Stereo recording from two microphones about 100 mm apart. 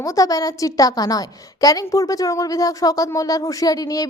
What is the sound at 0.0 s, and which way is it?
A woman's voice, 35° left (ahead or behind).